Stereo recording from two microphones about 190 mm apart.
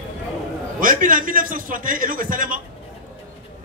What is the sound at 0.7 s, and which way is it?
A man's voice, 45° right (ahead or behind).